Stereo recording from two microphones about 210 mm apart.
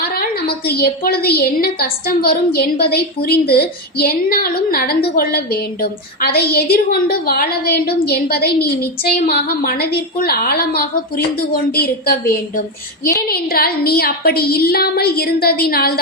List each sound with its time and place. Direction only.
0.0 s a woman's voice: 45° left (ahead or behind)